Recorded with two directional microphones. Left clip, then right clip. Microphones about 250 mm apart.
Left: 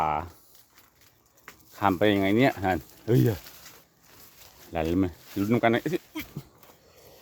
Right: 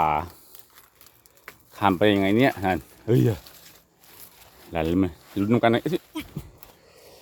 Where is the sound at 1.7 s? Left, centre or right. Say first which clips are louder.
Right 3 dB; centre.